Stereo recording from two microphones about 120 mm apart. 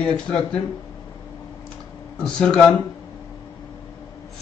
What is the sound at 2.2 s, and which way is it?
Speech, 5° left (ahead or behind).